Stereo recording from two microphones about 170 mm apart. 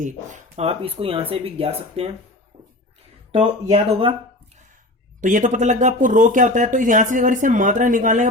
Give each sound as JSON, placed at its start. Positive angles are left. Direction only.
{"t": 0.0, "sound": "speech", "side_deg": -45}
{"t": 3.3, "sound": "speech", "side_deg": -35}
{"t": 5.2, "sound": "speech", "side_deg": -50}